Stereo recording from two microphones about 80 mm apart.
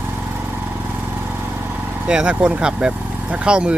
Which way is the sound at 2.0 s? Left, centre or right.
Centre.